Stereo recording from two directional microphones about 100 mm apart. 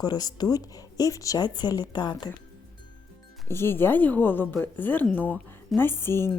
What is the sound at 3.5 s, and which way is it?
A woman's voice, 25° left (ahead or behind).